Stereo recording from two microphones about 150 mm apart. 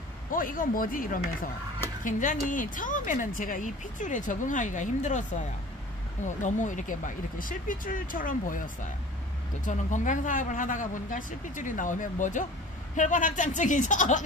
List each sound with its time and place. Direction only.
0.3 s speech: 65° left (ahead or behind)
2.0 s speech: 60° left (ahead or behind)
9.7 s speech: 55° left (ahead or behind)